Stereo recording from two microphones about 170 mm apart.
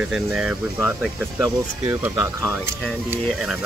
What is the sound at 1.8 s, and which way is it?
Speech, 20° right (ahead or behind).